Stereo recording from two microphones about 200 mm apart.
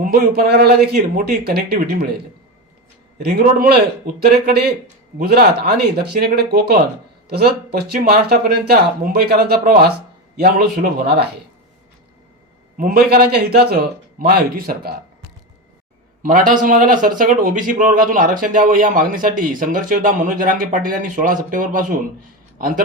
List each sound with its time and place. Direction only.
0.0 s a man's voice: 50° right (ahead or behind)
3.4 s a man's voice: 45° right (ahead or behind)
12.7 s a man's voice: 45° right (ahead or behind)
16.2 s a man's voice: 45° right (ahead or behind)